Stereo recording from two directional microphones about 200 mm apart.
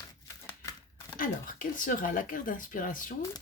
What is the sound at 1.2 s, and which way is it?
Speech, 45° left (ahead or behind).